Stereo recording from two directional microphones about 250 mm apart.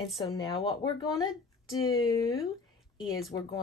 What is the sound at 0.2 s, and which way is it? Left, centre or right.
Speech, centre.